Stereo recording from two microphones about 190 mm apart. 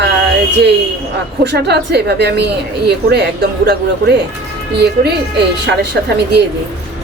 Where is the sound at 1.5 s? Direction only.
60° right (ahead or behind).